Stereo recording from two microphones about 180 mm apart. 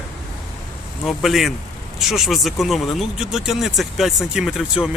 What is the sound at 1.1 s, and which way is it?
Speech, centre (ahead or behind).